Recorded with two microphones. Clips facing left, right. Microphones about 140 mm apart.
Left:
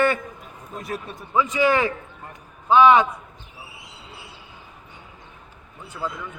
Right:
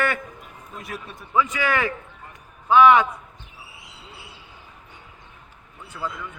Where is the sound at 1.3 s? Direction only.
25° left (ahead or behind).